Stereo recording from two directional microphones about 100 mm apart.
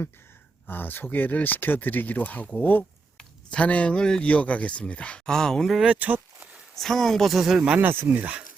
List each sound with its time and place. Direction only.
0.7 s speech: 20° left (ahead or behind); by 5.8 s 5° left (ahead or behind)
5.8 s speech: 15° right (ahead or behind)
6.7 s speech: 5° left (ahead or behind); by 8.4 s 15° right (ahead or behind)